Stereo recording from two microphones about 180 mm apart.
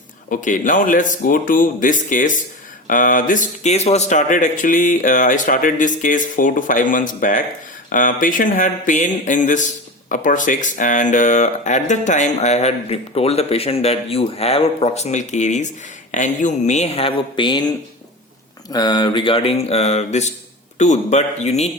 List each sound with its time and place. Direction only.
0.3 s speech: 45° left (ahead or behind); by 17.7 s 25° left (ahead or behind)
18.7 s speech: 25° left (ahead or behind); by 21.7 s 40° left (ahead or behind)